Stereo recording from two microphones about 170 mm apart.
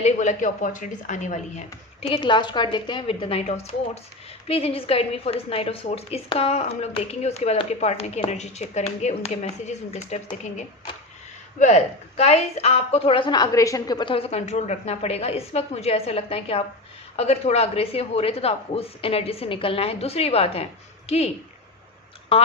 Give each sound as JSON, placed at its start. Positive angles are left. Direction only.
{"t": 0.0, "sound": "a woman's voice", "side_deg": 45}
{"t": 11.6, "sound": "a woman's voice", "side_deg": 40}
{"t": 22.3, "sound": "a woman's voice", "side_deg": 35}